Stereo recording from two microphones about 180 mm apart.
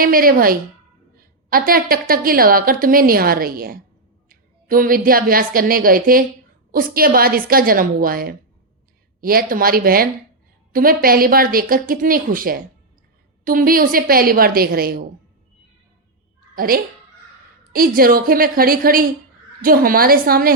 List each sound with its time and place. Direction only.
0.0 s a woman's voice: 55° right (ahead or behind)
16.6 s a woman's voice: 55° right (ahead or behind)